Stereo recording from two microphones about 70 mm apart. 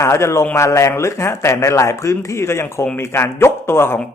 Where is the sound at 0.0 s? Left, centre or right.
Left.